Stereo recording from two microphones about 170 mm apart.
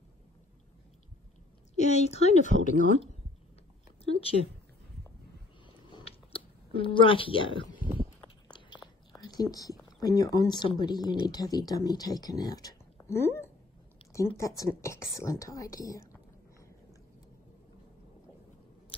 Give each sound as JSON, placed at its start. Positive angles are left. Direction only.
{"t": 1.8, "sound": "a woman's voice", "side_deg": 40}
{"t": 5.9, "sound": "a sound", "side_deg": 30}
{"t": 9.2, "sound": "speech", "side_deg": 20}